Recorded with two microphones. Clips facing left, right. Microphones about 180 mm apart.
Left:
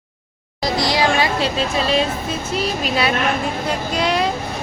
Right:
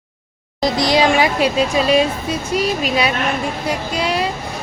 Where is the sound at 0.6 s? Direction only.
20° right (ahead or behind).